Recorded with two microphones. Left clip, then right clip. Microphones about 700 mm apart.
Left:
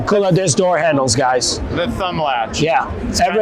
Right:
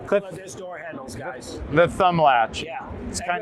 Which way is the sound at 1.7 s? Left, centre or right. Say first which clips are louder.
Right 7 dB; right.